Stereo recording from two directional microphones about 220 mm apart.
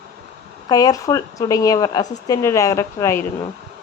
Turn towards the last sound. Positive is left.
turn(degrees=15)  # may be behind; listen again after turning